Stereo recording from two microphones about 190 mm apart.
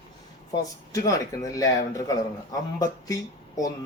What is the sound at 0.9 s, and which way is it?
A man's voice, 20° left (ahead or behind).